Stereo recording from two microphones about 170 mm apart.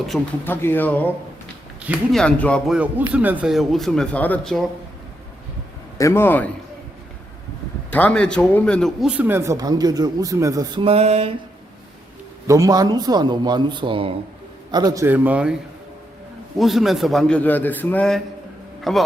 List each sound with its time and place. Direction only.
0.4 s speech: 10° left (ahead or behind)
2.1 s speech: 5° left (ahead or behind)
2.7 s speech: 10° right (ahead or behind)
6.0 s speech: 15° left (ahead or behind)
7.9 s a man's voice: 10° left (ahead or behind); by 10.8 s 20° right (ahead or behind)
10.8 s a sound: 35° right (ahead or behind)
12.5 s a man's voice: 20° right (ahead or behind)
16.6 s speech: centre (ahead or behind)